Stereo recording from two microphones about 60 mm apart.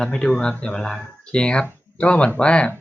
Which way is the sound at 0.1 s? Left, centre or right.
Left.